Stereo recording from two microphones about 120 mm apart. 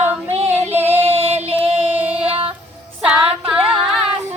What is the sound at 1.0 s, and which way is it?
Music, 55° right (ahead or behind).